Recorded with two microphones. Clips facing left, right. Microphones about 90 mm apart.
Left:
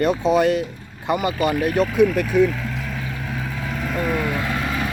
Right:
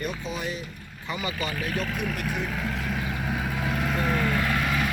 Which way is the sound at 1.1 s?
50° left (ahead or behind).